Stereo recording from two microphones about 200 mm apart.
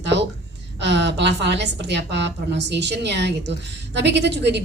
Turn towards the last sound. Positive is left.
turn(degrees=-60)  # may be behind; listen again after turning